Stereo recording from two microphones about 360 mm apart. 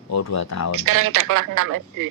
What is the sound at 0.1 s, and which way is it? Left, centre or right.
Speech, left.